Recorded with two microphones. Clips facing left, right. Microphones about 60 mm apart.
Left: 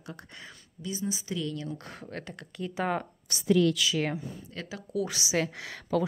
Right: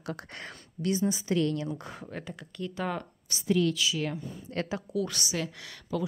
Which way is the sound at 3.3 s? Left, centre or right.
Left.